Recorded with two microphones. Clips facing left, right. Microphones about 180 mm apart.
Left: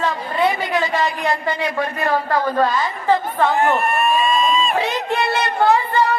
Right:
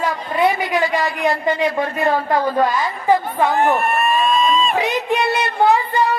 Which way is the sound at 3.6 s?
Centre (ahead or behind).